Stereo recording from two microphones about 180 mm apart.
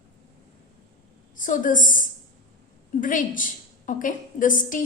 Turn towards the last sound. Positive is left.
turn(degrees=45)  # may be behind; listen again after turning